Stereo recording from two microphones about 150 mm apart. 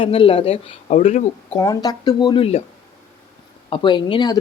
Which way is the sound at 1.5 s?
25° left (ahead or behind).